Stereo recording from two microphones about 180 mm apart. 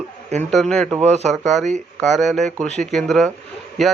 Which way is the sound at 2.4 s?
45° right (ahead or behind).